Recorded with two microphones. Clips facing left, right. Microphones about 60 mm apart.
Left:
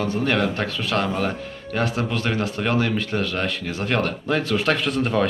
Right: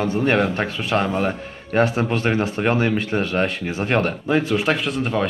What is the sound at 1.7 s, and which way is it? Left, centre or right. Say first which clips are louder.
Speech: right 5 dB; right.